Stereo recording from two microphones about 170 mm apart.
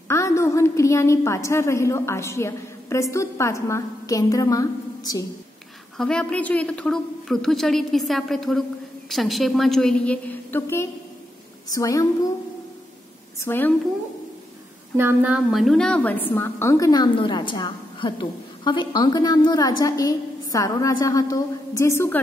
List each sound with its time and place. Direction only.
0.1 s a woman's voice: 15° left (ahead or behind)
5.9 s a woman's voice: 5° left (ahead or behind)
13.4 s a woman's voice: 10° left (ahead or behind)
15.0 s a woman's voice: 10° right (ahead or behind); by 22.2 s 15° left (ahead or behind)